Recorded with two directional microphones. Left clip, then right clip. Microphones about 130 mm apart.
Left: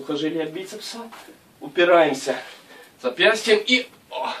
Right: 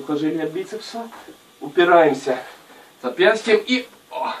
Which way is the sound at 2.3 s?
15° left (ahead or behind).